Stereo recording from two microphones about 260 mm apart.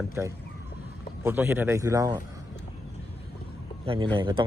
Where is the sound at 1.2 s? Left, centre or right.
Centre.